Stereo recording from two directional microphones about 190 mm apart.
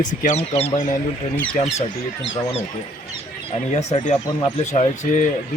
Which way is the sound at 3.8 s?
35° left (ahead or behind).